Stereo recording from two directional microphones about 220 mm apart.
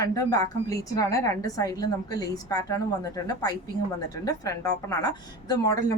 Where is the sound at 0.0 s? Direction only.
15° left (ahead or behind).